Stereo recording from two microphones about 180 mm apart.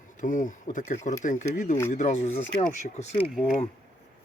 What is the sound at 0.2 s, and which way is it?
Speech, 45° left (ahead or behind).